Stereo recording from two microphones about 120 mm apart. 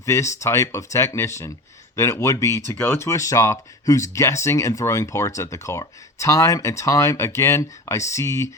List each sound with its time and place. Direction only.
0.0 s speech: 25° left (ahead or behind)